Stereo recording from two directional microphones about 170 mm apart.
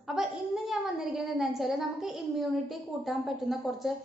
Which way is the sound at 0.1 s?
5° right (ahead or behind).